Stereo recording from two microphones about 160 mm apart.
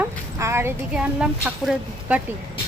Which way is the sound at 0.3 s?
15° right (ahead or behind).